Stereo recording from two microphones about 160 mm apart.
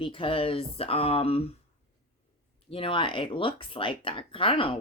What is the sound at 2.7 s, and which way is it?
Speech, 35° left (ahead or behind).